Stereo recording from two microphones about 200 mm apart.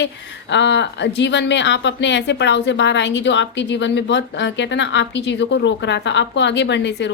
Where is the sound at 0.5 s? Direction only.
60° left (ahead or behind).